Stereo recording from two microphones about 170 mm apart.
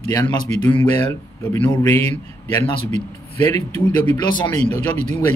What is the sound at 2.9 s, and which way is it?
Speech, 40° right (ahead or behind).